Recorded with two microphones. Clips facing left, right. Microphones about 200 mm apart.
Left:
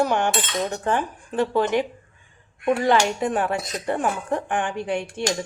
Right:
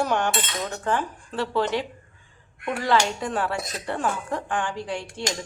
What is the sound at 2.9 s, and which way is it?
Speech, 20° left (ahead or behind).